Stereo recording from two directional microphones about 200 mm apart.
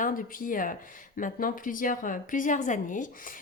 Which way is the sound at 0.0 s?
45° left (ahead or behind).